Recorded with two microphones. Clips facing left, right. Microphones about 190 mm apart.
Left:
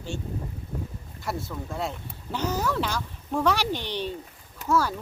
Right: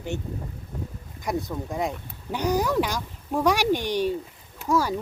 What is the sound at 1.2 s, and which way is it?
Speech, 15° right (ahead or behind).